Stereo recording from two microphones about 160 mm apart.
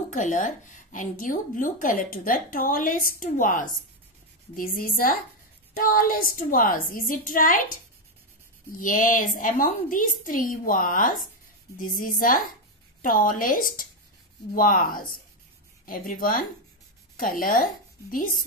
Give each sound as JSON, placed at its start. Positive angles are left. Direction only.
{"t": 0.1, "sound": "a woman's voice", "side_deg": 55}